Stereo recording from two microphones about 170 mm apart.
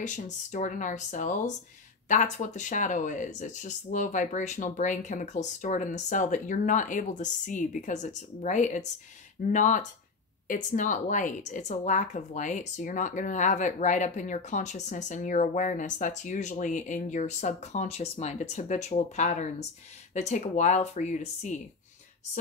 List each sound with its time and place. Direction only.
0.0 s speech: 45° left (ahead or behind)